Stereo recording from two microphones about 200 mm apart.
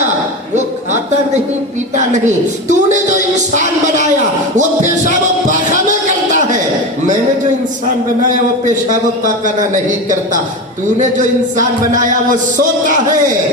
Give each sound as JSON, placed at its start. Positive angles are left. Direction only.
{"t": 2.0, "sound": "a woman's voice", "side_deg": -35}
{"t": 9.6, "sound": "a woman's voice", "side_deg": -40}